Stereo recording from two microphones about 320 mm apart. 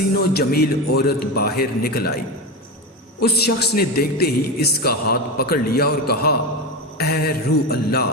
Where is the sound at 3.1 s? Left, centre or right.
Left.